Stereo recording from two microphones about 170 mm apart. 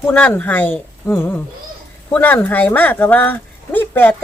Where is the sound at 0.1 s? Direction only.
10° left (ahead or behind).